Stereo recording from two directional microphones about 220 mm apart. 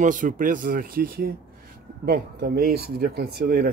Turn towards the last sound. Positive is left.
turn(degrees=-45)  # may be behind; listen again after turning